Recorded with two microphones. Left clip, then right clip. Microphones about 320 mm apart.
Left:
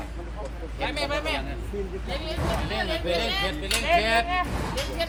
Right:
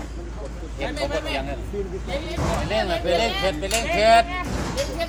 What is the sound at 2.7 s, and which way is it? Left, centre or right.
Speech, right.